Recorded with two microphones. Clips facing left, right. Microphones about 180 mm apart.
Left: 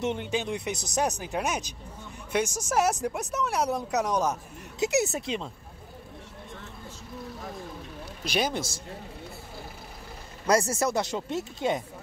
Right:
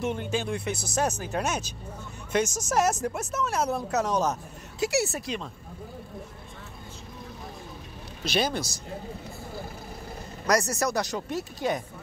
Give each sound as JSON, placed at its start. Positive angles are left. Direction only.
{"t": 0.0, "sound": "speech", "side_deg": 20}
{"t": 8.3, "sound": "speech", "side_deg": 15}
{"t": 10.5, "sound": "speech", "side_deg": 25}